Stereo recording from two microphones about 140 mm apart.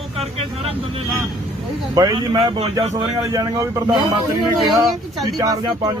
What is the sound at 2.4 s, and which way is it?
Speech, 45° right (ahead or behind).